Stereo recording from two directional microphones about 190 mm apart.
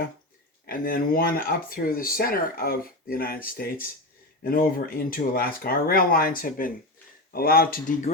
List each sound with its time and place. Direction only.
0.7 s speech: 50° left (ahead or behind)